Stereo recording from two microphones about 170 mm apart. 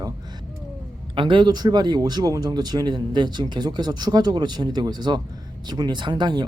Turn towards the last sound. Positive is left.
turn(degrees=-25)  # may be behind; listen again after turning